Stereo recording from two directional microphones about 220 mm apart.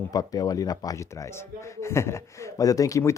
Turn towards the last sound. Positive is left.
turn(degrees=15)  # may be behind; listen again after turning